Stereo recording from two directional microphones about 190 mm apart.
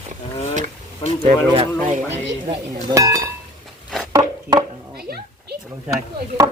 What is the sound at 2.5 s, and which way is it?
Speech, 15° right (ahead or behind).